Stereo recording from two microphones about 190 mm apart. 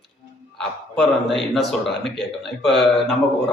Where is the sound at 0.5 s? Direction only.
Centre (ahead or behind).